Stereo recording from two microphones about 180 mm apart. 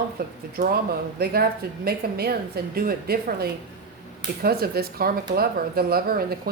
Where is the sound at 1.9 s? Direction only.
60° right (ahead or behind).